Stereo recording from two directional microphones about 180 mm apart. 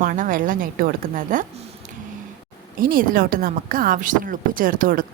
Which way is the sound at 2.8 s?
50° right (ahead or behind).